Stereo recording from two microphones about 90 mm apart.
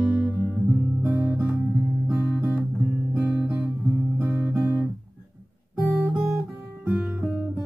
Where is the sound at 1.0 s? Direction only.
25° right (ahead or behind).